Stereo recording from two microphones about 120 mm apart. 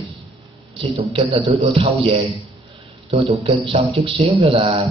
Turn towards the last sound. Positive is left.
turn(degrees=-50)  # may be behind; listen again after turning